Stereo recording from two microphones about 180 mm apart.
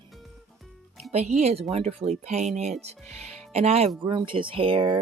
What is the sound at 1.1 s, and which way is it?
Speech, 35° right (ahead or behind).